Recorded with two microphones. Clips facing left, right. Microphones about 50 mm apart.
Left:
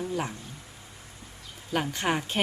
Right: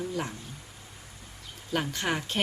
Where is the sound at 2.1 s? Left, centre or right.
Centre.